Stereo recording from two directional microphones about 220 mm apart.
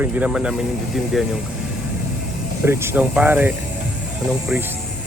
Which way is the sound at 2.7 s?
10° right (ahead or behind).